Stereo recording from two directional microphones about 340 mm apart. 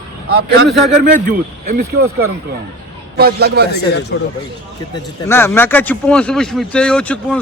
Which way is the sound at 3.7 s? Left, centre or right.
Left.